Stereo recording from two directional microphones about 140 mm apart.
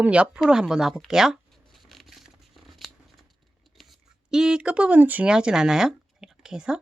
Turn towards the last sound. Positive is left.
turn(degrees=-5)  # may be behind; listen again after turning